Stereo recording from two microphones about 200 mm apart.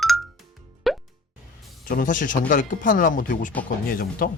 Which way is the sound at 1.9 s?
40° left (ahead or behind).